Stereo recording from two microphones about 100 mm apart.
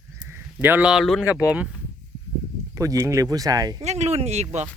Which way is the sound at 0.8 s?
Centre (ahead or behind).